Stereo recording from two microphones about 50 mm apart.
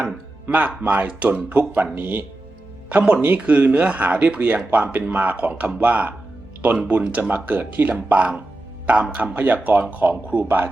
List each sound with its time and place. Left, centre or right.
0.0 s speech: right
3.0 s speech: right
7.2 s speech: right